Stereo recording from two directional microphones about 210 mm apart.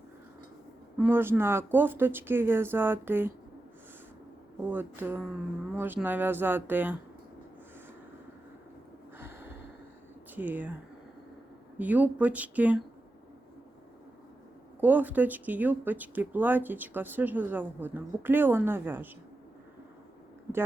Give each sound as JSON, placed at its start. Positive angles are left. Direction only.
{"t": 0.9, "sound": "speech", "side_deg": -10}
{"t": 4.6, "sound": "speech", "side_deg": -10}
{"t": 9.1, "sound": "snort", "side_deg": -10}
{"t": 10.3, "sound": "speech", "side_deg": -10}
{"t": 11.8, "sound": "speech", "side_deg": -5}
{"t": 14.8, "sound": "speech", "side_deg": -10}